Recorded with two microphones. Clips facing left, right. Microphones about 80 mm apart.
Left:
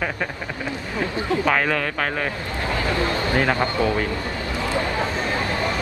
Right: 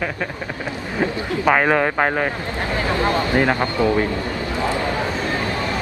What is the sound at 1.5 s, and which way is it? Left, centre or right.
Speech, right.